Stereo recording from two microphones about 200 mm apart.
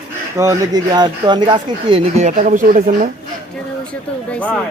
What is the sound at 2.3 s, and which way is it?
Speech, 40° right (ahead or behind).